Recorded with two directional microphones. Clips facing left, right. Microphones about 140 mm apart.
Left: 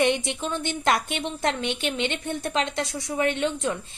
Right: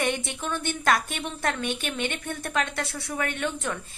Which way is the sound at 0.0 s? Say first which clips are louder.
Left 5 dB; 20° left (ahead or behind).